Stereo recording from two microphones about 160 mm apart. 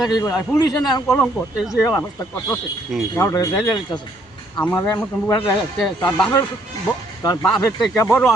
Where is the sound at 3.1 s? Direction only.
20° left (ahead or behind).